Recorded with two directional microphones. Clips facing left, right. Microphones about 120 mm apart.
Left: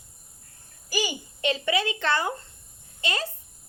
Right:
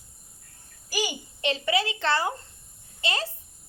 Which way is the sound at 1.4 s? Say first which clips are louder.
Even; 30° right (ahead or behind).